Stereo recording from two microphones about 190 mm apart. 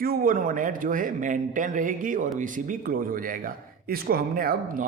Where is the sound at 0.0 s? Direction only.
50° right (ahead or behind).